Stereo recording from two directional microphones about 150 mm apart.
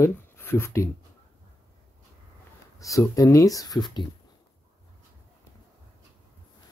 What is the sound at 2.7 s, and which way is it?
Speech, 20° left (ahead or behind).